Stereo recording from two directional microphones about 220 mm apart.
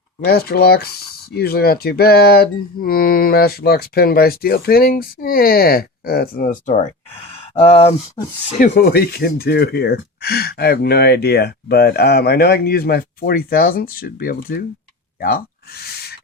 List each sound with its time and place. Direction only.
0.3 s speech: 45° left (ahead or behind); by 8.6 s 25° left (ahead or behind)
8.6 s speech: 45° left (ahead or behind)